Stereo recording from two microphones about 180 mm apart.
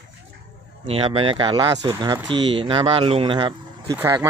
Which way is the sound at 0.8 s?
30° right (ahead or behind).